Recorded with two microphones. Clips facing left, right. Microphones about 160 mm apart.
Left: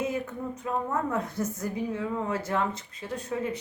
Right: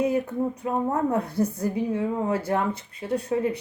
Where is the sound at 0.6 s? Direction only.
30° right (ahead or behind).